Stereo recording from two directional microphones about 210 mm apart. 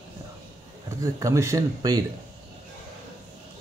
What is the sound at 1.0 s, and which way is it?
Speech, 15° right (ahead or behind).